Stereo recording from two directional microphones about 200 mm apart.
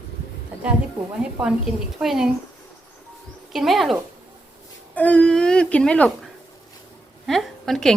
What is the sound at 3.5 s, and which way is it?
Speech, centre (ahead or behind).